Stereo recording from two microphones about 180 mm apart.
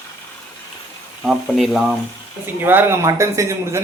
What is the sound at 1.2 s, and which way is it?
Speech, centre (ahead or behind).